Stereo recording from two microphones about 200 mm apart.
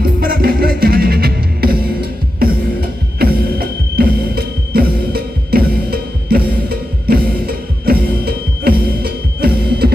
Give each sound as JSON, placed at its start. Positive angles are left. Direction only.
{"t": 0.0, "sound": "music", "side_deg": -50}